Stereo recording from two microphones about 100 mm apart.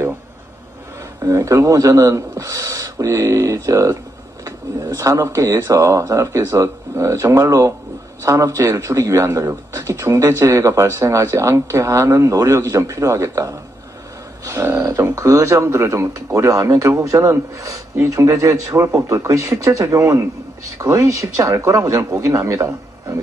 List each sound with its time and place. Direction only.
1.2 s speech: 30° right (ahead or behind)